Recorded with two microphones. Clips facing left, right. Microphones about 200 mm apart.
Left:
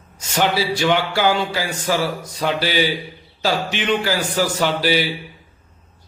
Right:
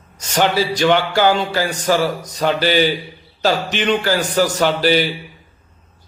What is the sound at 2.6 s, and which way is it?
Speech, 45° right (ahead or behind).